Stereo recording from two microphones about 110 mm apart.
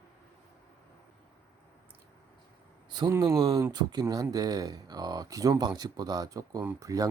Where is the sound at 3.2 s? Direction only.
35° right (ahead or behind).